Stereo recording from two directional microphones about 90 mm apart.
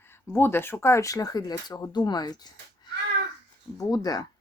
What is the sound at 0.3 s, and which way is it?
Speech, 25° left (ahead or behind).